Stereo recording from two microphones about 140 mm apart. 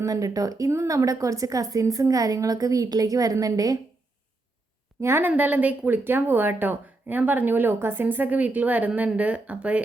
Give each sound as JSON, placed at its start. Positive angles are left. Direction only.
{"t": 0.0, "sound": "a woman's voice", "side_deg": -25}
{"t": 4.9, "sound": "speech", "side_deg": -20}